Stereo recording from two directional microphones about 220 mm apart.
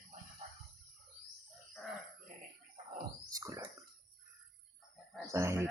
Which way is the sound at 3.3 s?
15° right (ahead or behind).